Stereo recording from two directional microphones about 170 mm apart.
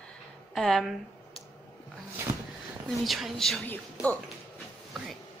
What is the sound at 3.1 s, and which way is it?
A woman's voice, centre (ahead or behind).